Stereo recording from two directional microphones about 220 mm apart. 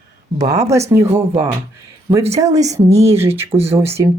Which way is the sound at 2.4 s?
15° right (ahead or behind).